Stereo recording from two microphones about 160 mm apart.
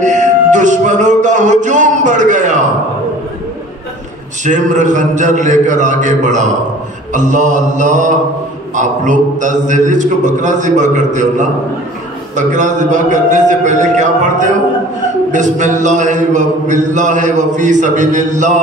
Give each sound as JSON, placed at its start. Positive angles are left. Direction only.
{"t": 0.0, "sound": "music", "side_deg": -50}
{"t": 4.5, "sound": "a man's voice", "side_deg": -50}